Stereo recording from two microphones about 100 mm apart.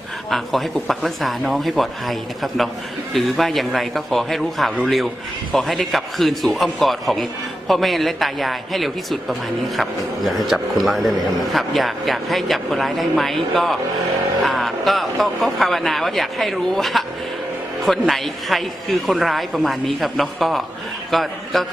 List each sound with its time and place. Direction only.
0.3 s a man's voice: centre (ahead or behind)